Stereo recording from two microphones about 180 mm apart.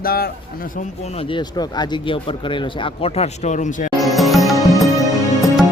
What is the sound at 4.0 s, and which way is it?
Music, centre (ahead or behind).